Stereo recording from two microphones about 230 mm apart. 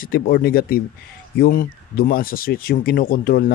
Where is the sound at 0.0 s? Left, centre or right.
Left.